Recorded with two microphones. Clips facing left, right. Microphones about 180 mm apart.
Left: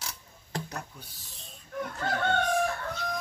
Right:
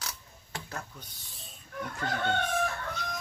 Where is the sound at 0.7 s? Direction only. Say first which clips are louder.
Left 1 dB; 15° left (ahead or behind).